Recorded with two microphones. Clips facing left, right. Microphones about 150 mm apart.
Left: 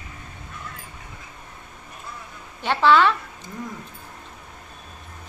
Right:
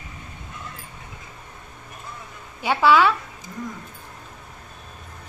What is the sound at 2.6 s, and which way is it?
Speech, 10° right (ahead or behind).